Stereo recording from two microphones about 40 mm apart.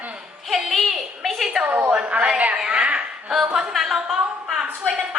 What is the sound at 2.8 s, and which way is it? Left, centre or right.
Chuckle, right.